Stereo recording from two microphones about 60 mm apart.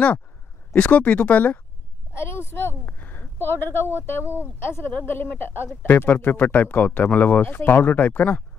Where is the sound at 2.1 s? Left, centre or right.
Left.